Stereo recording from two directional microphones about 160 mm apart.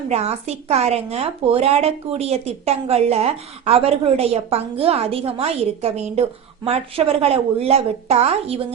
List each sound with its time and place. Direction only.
0.1 s a woman's voice: 40° right (ahead or behind)